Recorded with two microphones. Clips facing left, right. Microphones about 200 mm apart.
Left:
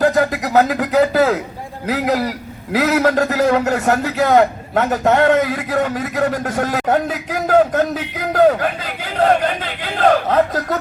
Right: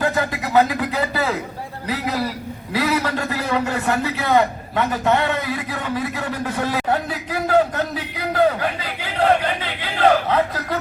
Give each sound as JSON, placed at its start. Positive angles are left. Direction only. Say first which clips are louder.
{"t": 0.0, "sound": "a man's voice", "louder": "left 6 dB", "side_deg": 40}